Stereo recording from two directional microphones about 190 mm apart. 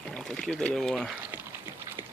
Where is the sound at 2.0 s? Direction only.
15° right (ahead or behind).